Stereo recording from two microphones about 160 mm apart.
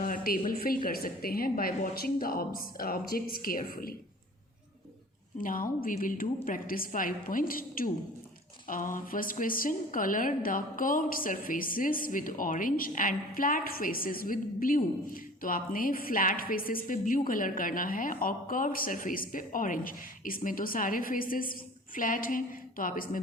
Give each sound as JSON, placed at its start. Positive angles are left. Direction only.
{"t": 0.0, "sound": "a sound", "side_deg": 60}
{"t": 0.6, "sound": "a woman's voice", "side_deg": 65}
{"t": 5.4, "sound": "a woman's voice", "side_deg": 60}